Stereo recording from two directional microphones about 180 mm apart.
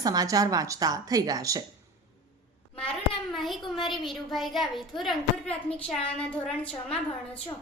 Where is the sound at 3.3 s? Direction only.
Centre (ahead or behind).